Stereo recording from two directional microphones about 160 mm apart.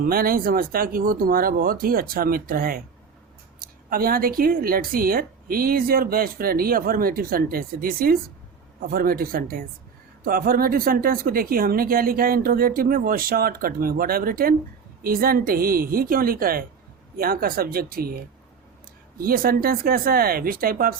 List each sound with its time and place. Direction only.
0.0 s a woman's voice: 65° right (ahead or behind)